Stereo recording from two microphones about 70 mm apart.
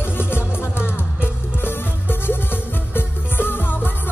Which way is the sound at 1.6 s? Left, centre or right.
Left.